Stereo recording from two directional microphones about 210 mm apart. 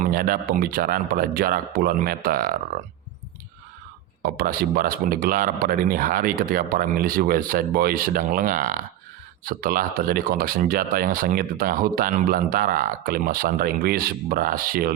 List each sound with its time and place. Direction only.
0.0 s speech: 45° right (ahead or behind)
4.2 s speech: 45° right (ahead or behind)